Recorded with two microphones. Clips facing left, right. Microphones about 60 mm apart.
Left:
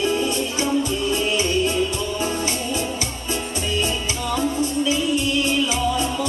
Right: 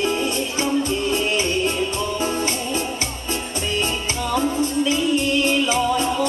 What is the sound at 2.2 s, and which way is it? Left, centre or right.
Music, right.